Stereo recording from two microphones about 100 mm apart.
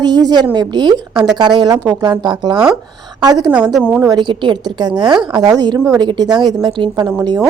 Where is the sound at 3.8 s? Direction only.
15° right (ahead or behind).